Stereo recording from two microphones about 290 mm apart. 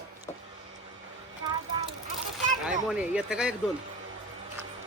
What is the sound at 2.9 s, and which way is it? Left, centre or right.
Speech, centre.